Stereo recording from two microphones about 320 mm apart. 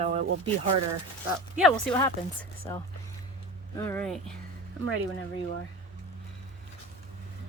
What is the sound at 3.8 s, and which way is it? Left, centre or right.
Speech, centre.